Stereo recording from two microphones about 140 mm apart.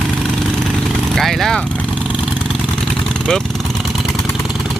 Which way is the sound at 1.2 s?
Centre (ahead or behind).